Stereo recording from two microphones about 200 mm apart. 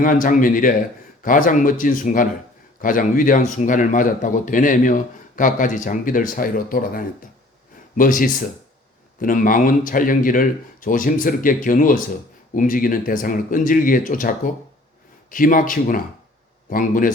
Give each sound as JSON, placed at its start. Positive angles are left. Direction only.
{"t": 0.0, "sound": "speech", "side_deg": 40}